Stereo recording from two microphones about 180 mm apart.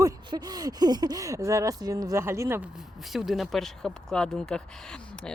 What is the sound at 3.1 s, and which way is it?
Speech, centre (ahead or behind).